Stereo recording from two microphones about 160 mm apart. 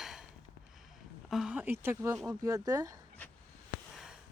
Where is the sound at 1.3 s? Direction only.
5° right (ahead or behind); by 3.0 s 20° right (ahead or behind).